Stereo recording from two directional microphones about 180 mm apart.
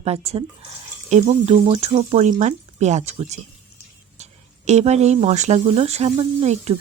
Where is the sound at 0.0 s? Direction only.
35° right (ahead or behind).